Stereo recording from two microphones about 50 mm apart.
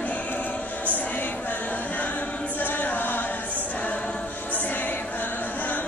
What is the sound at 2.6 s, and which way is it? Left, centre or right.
A capella, left.